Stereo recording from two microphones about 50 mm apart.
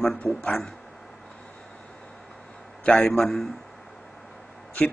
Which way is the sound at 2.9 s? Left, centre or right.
Centre.